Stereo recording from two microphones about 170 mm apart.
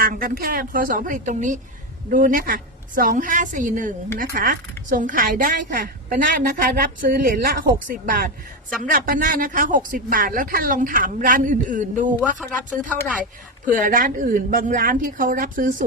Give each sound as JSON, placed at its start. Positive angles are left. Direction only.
{"t": 0.0, "sound": "speech", "side_deg": -50}
{"t": 12.4, "sound": "speech", "side_deg": 5}
{"t": 13.7, "sound": "speech", "side_deg": -50}